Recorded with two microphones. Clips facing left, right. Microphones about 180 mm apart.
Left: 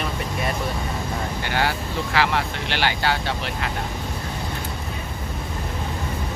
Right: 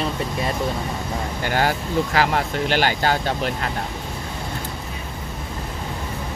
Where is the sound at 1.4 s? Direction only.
45° right (ahead or behind).